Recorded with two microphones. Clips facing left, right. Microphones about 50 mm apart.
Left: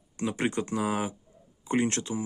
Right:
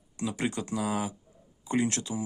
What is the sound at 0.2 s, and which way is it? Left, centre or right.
Speech, left.